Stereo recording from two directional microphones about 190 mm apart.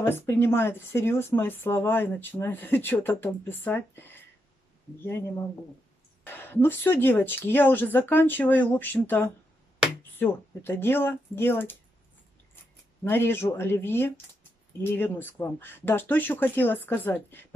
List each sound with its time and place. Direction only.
0.0 s speech: 10° left (ahead or behind)
13.0 s speech: 10° left (ahead or behind)